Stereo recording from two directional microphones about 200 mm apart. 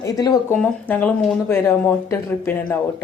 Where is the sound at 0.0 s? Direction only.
15° left (ahead or behind).